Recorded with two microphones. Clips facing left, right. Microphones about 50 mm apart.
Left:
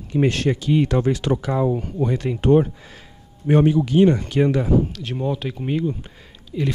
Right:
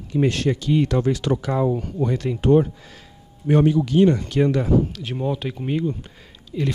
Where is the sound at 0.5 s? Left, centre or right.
Left.